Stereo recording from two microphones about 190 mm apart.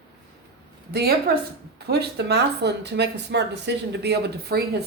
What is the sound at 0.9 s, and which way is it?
Speech, 55° right (ahead or behind).